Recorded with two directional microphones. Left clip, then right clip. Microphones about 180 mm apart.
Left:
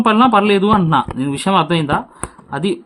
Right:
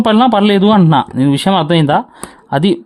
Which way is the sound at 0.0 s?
45° right (ahead or behind).